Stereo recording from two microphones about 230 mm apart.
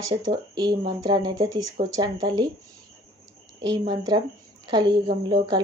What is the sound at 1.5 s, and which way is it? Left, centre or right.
Speech, right.